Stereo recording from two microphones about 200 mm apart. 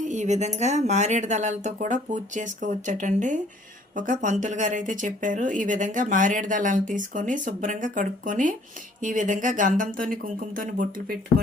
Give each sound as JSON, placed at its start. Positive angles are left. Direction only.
{"t": 0.1, "sound": "speech", "side_deg": -35}